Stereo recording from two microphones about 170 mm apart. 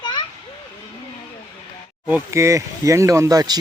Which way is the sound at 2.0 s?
15° right (ahead or behind).